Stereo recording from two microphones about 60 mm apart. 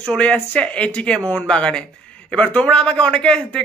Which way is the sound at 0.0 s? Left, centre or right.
Centre.